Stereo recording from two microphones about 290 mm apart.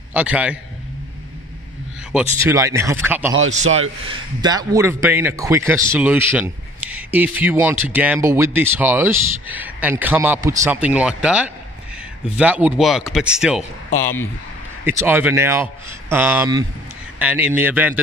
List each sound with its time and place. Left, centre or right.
0.1 s speech: centre
2.1 s a man's voice: centre
3.4 s a man's voice: right
4.1 s a man's voice: centre
14.9 s a man's voice: centre